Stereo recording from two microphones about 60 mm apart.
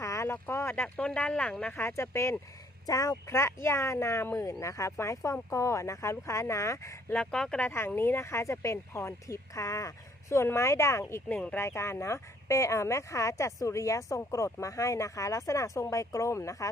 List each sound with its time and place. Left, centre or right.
0.0 s a sound: left
0.4 s speech: left
0.9 s speech: centre
1.7 s speech: left
2.8 s speech: left
7.2 s speech: centre
7.9 s speech: left
11.5 s speech: left